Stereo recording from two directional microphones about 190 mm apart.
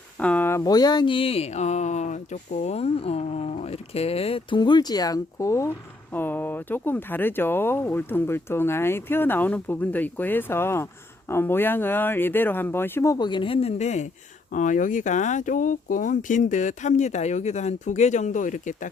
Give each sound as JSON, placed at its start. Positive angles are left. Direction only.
{"t": 0.2, "sound": "speech", "side_deg": 10}